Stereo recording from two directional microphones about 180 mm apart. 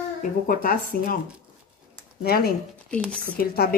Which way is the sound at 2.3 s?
55° left (ahead or behind).